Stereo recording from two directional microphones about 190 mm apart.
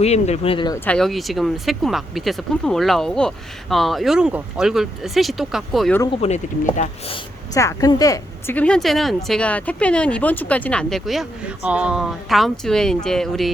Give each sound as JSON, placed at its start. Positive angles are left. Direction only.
{"t": 0.0, "sound": "speech", "side_deg": 35}
{"t": 0.9, "sound": "a woman's voice", "side_deg": 0}
{"t": 6.2, "sound": "speech", "side_deg": 35}
{"t": 7.5, "sound": "a woman's voice", "side_deg": 15}